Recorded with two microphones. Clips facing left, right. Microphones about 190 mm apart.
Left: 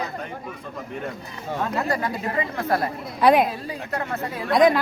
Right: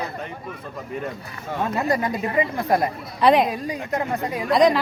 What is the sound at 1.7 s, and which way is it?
Speech, 20° right (ahead or behind).